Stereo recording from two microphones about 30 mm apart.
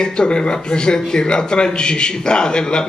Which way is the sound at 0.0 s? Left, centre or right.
Left.